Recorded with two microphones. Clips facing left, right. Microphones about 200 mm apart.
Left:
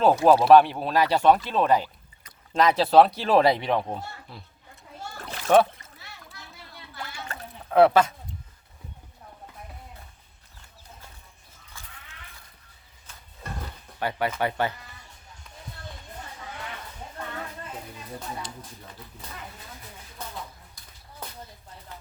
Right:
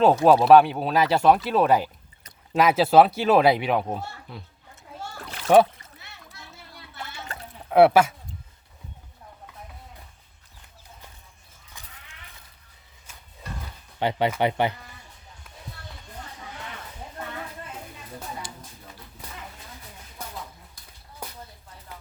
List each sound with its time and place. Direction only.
0.0 s speech: centre (ahead or behind)
7.7 s speech: 10° right (ahead or behind)
11.7 s a sound: 20° right (ahead or behind)
14.0 s speech: 20° right (ahead or behind)